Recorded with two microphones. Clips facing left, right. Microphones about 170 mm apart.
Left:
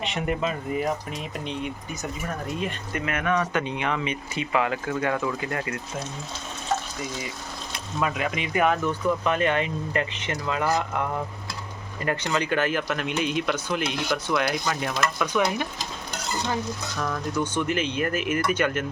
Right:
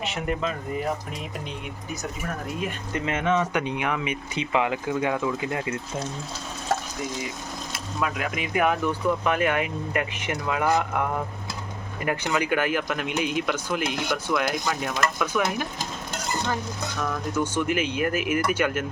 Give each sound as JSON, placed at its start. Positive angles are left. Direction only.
{"t": 0.0, "sound": "speech", "side_deg": 0}
{"t": 2.9, "sound": "speech", "side_deg": -25}
{"t": 7.7, "sound": "speech", "side_deg": 0}
{"t": 12.0, "sound": "speech", "side_deg": -10}
{"t": 17.0, "sound": "speech", "side_deg": -5}